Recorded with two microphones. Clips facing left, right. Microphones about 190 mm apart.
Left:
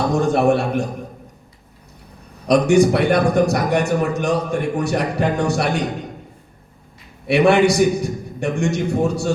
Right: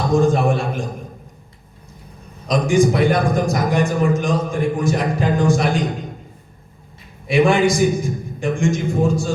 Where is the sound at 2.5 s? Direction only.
65° left (ahead or behind).